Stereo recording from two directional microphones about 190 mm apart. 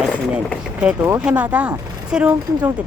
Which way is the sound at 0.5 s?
5° right (ahead or behind).